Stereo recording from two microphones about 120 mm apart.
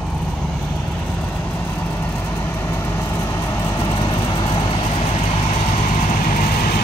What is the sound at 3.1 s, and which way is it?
Vehicle, 30° left (ahead or behind).